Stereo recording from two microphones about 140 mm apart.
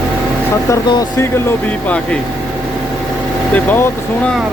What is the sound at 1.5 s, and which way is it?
Speech, 10° left (ahead or behind).